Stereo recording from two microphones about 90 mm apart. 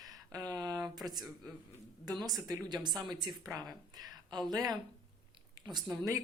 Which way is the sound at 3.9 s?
50° right (ahead or behind).